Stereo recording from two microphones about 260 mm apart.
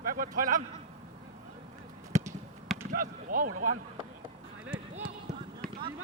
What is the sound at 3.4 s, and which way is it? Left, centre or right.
Speech, right.